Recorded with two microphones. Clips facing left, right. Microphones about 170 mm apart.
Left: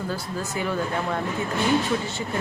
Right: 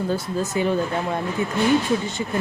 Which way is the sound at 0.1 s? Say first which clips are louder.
Right 6 dB; 20° right (ahead or behind).